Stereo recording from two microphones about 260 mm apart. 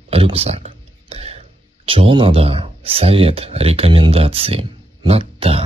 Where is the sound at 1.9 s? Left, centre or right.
Centre.